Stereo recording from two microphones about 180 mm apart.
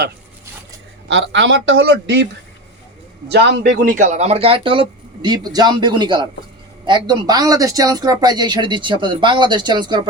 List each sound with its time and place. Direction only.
1.0 s speech: 90° right; by 2.2 s 70° right (ahead or behind)
3.2 s a man's voice: 65° right (ahead or behind)
4.0 s speech: 40° right (ahead or behind)